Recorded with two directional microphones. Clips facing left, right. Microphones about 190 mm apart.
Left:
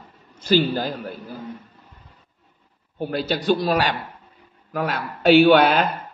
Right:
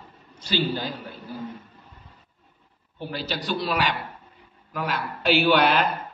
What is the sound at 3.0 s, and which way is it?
A man's voice, 50° left (ahead or behind).